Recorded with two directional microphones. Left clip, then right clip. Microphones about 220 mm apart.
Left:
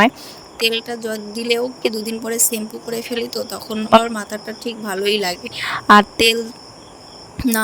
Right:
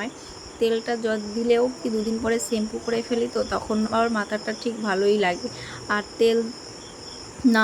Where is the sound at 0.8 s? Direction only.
Centre (ahead or behind).